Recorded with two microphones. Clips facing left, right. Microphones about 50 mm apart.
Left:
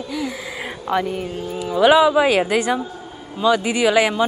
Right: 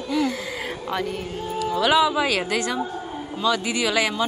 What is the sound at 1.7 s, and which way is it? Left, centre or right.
A man's voice, centre.